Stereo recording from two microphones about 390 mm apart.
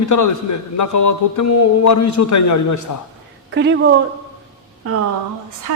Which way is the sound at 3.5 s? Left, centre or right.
Right.